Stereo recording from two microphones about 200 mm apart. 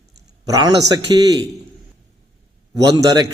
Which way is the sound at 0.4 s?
15° right (ahead or behind).